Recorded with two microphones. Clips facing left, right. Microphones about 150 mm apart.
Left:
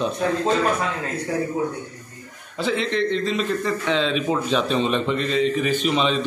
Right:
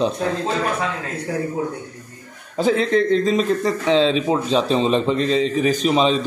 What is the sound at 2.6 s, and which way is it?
A man's voice, 45° right (ahead or behind).